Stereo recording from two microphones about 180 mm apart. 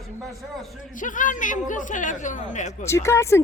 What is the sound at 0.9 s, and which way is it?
A woman's voice, 45° left (ahead or behind).